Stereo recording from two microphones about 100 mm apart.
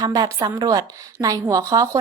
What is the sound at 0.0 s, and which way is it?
A woman's voice, 40° right (ahead or behind).